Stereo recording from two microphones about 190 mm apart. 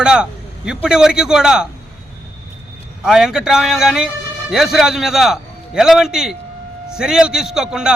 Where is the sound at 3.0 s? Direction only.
5° right (ahead or behind).